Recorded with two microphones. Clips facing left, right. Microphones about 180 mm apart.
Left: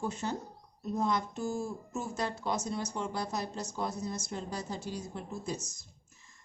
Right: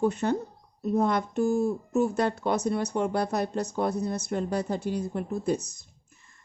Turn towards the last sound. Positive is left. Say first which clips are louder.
# right 1 dB
turn(degrees=-60)  # may be behind; listen again after turning